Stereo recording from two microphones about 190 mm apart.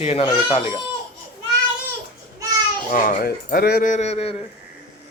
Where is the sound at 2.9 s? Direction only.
45° left (ahead or behind).